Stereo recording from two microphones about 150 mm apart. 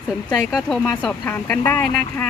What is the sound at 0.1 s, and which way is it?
Speech, centre (ahead or behind).